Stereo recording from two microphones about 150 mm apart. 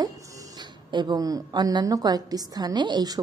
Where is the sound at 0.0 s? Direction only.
25° right (ahead or behind).